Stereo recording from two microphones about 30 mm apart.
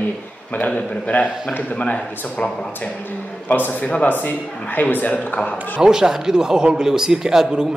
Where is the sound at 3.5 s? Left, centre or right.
Left.